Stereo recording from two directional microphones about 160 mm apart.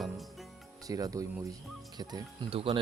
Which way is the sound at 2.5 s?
35° right (ahead or behind).